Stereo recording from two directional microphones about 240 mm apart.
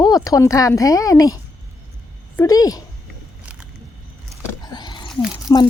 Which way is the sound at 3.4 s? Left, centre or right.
Centre.